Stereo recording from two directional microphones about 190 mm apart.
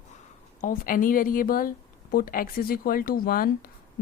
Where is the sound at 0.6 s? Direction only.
45° left (ahead or behind).